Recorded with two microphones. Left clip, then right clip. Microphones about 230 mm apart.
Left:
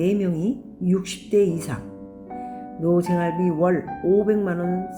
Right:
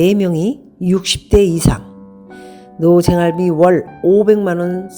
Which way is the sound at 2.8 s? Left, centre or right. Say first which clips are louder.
Right 10 dB; right.